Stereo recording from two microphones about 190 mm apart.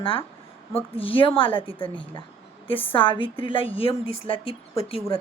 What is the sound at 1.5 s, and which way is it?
Speech, 10° left (ahead or behind).